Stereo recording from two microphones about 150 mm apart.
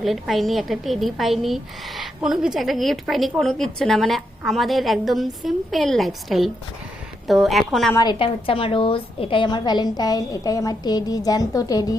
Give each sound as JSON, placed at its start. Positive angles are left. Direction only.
{"t": 0.0, "sound": "a woman's voice", "side_deg": 0}
{"t": 8.2, "sound": "a woman's voice", "side_deg": 35}